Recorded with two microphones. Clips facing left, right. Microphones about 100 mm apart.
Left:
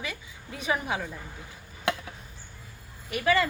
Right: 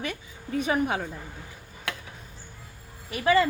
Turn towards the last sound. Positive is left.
turn(degrees=-30)  # may be behind; listen again after turning